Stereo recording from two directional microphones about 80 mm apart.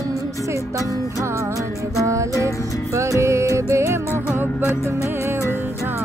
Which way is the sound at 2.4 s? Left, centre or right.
Right.